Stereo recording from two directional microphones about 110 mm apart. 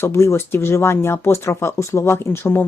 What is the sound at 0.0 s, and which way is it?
Speech, 25° left (ahead or behind).